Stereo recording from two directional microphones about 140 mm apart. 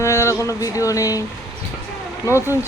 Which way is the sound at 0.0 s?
20° left (ahead or behind).